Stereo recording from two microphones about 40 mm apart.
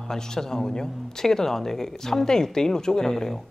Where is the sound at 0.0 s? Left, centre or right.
Centre.